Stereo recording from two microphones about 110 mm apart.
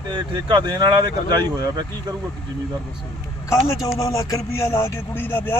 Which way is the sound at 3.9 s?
30° left (ahead or behind).